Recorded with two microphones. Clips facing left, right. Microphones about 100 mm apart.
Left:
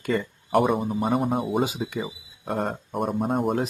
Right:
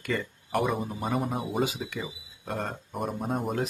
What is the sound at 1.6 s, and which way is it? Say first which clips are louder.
Speech: left 4 dB; 25° left (ahead or behind).